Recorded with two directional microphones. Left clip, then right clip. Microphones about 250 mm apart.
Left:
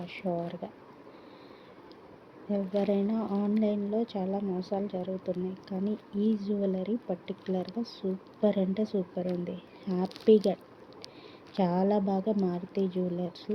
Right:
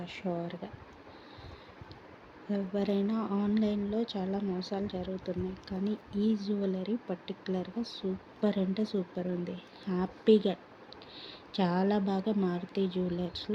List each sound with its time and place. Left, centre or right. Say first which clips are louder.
0.0 s speech: left 3 dB; right
2.5 s a woman's voice: left 4 dB; right